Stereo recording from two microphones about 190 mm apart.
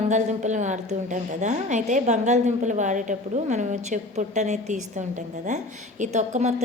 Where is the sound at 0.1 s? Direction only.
40° right (ahead or behind).